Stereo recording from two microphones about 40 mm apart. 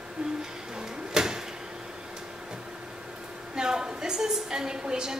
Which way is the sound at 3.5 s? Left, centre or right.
Centre.